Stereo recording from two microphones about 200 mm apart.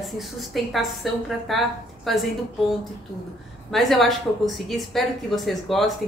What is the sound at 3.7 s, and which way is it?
A woman's voice, centre (ahead or behind).